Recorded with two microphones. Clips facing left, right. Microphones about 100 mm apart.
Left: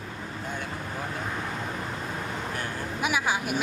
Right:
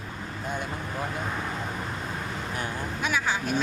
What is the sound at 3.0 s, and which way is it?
Speech, 10° left (ahead or behind).